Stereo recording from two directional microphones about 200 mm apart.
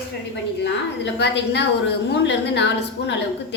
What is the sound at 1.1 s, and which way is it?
A woman's voice, 60° left (ahead or behind).